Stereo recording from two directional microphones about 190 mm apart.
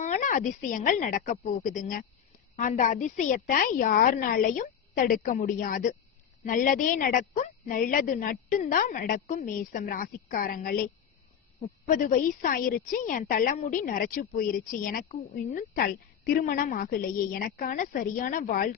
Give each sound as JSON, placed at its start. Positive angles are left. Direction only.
{"t": 0.0, "sound": "a woman's voice", "side_deg": 40}
{"t": 11.9, "sound": "a woman's voice", "side_deg": 45}